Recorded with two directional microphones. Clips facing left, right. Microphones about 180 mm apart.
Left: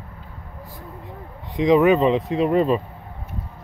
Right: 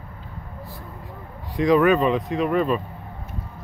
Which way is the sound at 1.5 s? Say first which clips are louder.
Left 2 dB; 20° left (ahead or behind).